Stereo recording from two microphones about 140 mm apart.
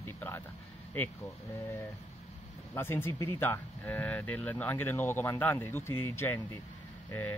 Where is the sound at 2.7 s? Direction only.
15° left (ahead or behind).